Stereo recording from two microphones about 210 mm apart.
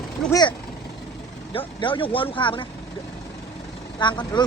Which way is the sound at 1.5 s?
25° left (ahead or behind).